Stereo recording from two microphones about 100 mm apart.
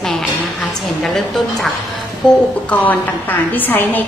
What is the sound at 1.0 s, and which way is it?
Speech, centre (ahead or behind).